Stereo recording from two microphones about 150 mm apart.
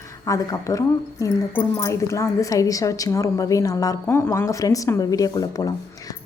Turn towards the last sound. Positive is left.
turn(degrees=25)  # may be behind; listen again after turning